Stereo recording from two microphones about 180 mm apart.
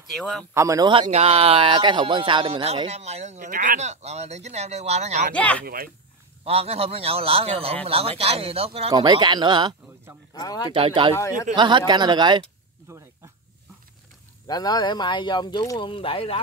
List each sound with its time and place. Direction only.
0.1 s speech: centre (ahead or behind)
0.6 s speech: 20° right (ahead or behind)
1.0 s speech: 35° right (ahead or behind)
5.3 s speech: 10° left (ahead or behind)
6.4 s speech: 35° right (ahead or behind)
10.3 s speech: 20° left (ahead or behind)
10.7 s speech: 30° right (ahead or behind)
11.1 s speech: 15° left (ahead or behind)
11.5 s speech: 25° right (ahead or behind)
14.5 s speech: 20° left (ahead or behind)